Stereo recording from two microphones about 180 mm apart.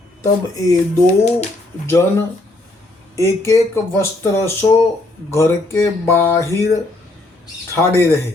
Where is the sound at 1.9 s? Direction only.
15° left (ahead or behind).